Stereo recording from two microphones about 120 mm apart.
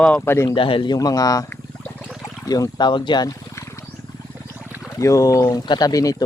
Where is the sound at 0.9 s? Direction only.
30° left (ahead or behind).